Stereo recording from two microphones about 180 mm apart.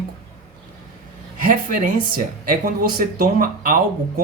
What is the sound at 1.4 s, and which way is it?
Speech, 50° right (ahead or behind).